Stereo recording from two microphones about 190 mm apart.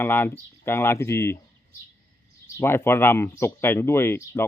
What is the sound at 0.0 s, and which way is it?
Speech, 10° left (ahead or behind).